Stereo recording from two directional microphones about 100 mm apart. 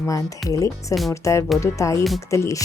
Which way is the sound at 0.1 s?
35° left (ahead or behind).